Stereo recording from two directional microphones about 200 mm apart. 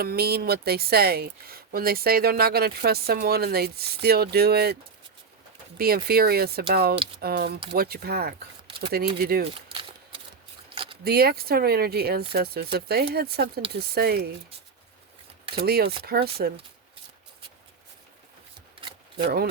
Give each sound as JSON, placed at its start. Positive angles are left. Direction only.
{"t": 0.0, "sound": "speech", "side_deg": -50}
{"t": 10.1, "sound": "a sound", "side_deg": -25}
{"t": 11.0, "sound": "speech", "side_deg": -50}
{"t": 15.5, "sound": "speech", "side_deg": -50}
{"t": 19.1, "sound": "speech", "side_deg": -50}